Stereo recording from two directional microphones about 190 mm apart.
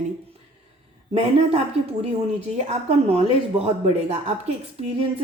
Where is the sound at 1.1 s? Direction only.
35° right (ahead or behind).